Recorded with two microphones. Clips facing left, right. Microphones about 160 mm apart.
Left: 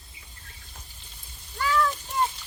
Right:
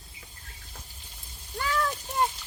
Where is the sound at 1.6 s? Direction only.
40° right (ahead or behind).